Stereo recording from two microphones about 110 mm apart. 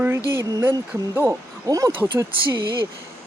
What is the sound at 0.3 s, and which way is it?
Speech, 20° right (ahead or behind).